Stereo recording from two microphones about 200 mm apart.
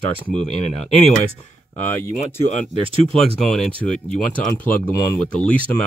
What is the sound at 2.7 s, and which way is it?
Speech, 25° right (ahead or behind).